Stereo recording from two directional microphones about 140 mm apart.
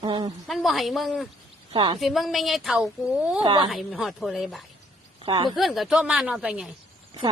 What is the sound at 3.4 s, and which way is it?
Speech, 35° right (ahead or behind).